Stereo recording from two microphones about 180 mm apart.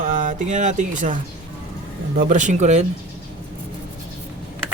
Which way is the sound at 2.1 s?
45° right (ahead or behind).